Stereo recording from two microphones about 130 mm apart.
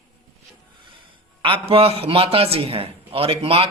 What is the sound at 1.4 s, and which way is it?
A man's voice, 45° right (ahead or behind).